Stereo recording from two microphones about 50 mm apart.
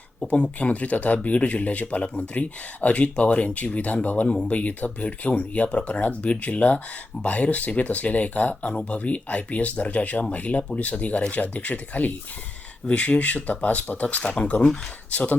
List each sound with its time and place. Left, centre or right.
0.3 s speech: left
14.3 s speech: centre
15.1 s speech: left